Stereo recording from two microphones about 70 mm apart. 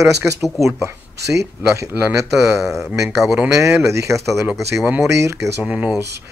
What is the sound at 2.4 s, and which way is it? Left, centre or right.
Speech, centre.